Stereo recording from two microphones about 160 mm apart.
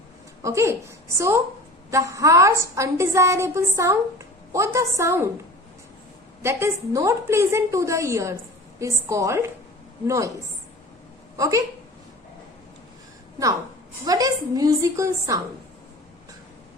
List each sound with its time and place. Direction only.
0.4 s a woman's voice: 20° right (ahead or behind)
6.4 s a woman's voice: 15° right (ahead or behind)
11.3 s a woman's voice: 20° right (ahead or behind)
14.0 s a woman's voice: 20° right (ahead or behind)